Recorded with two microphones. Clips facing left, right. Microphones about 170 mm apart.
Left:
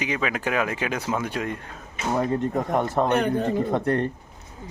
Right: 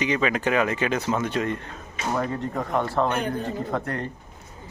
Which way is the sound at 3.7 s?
30° left (ahead or behind).